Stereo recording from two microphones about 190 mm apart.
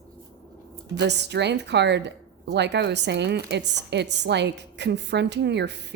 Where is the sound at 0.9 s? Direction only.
65° right (ahead or behind).